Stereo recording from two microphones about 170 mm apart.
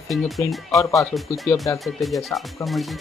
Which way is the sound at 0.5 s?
Centre (ahead or behind).